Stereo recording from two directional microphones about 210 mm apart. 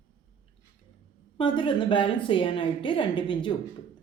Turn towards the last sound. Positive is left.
turn(degrees=20)  # may be behind; listen again after turning